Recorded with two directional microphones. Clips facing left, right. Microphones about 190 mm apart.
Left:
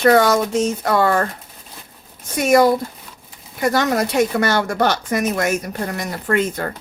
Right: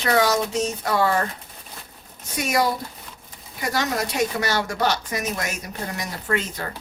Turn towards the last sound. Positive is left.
turn(degrees=50)  # may be behind; listen again after turning